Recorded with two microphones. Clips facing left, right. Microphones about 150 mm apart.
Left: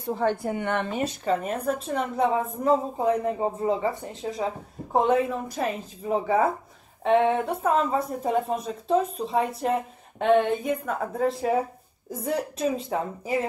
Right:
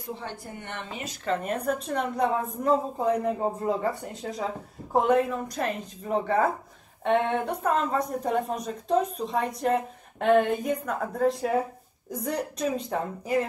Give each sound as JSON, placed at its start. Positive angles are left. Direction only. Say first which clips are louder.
{"t": 0.5, "sound": "speech", "louder": "left 11 dB", "side_deg": 90}
{"t": 1.2, "sound": "a woman's voice", "louder": "right 1 dB", "side_deg": 5}